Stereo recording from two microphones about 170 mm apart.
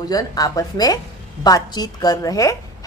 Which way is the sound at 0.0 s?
20° left (ahead or behind).